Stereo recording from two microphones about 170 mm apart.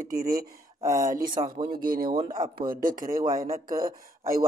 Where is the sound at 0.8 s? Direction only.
20° right (ahead or behind).